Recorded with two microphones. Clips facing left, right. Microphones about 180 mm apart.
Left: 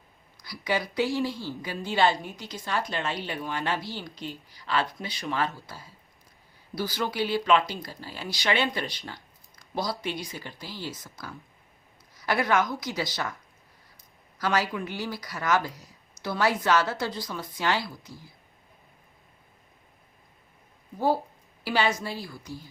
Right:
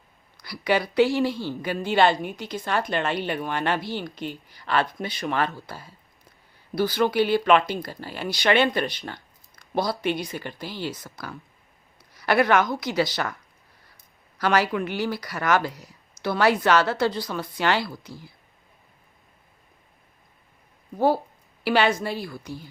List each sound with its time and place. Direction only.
0.3 s a woman's voice: 65° right (ahead or behind)
21.6 s a woman's voice: 65° right (ahead or behind)